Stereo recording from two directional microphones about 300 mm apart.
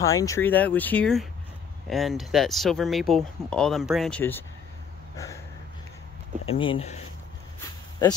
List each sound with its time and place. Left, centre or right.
0.0 s speech: centre
5.1 s a sound: centre
6.4 s speech: centre